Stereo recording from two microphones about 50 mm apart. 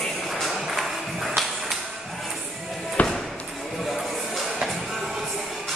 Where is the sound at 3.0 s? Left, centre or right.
Left.